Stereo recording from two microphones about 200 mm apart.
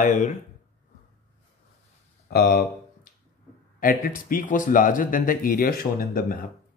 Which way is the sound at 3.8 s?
45° left (ahead or behind).